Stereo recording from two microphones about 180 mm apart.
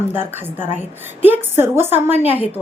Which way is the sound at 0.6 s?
40° left (ahead or behind).